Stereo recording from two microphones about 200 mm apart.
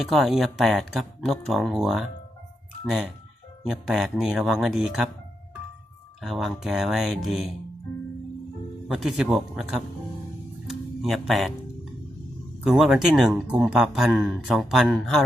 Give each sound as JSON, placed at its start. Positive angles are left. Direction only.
{"t": 0.0, "sound": "speech", "side_deg": 0}
{"t": 3.6, "sound": "speech", "side_deg": 0}
{"t": 6.2, "sound": "speech", "side_deg": 0}
{"t": 8.9, "sound": "speech", "side_deg": 0}
{"t": 12.6, "sound": "speech", "side_deg": 0}